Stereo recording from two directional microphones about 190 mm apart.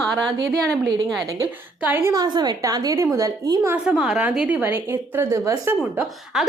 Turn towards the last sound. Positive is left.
turn(degrees=-5)  # may be behind; listen again after turning